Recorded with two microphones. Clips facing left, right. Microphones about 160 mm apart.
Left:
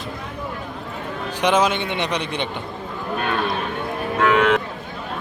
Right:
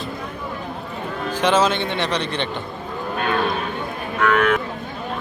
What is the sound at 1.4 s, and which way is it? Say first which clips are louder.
Speech: even; 15° left (ahead or behind).